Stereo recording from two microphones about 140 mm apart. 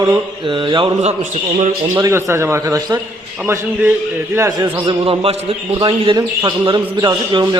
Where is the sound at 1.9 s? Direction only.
20° right (ahead or behind).